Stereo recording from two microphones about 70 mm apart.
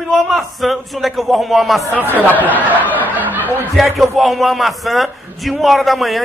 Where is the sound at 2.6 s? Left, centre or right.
Right.